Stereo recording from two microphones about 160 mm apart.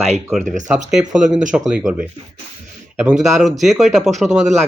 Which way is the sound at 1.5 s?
5° right (ahead or behind).